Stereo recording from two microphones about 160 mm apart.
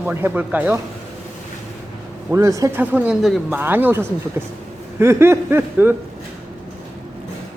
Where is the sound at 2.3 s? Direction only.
20° right (ahead or behind).